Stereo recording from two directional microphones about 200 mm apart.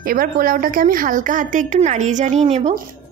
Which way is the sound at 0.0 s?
45° right (ahead or behind).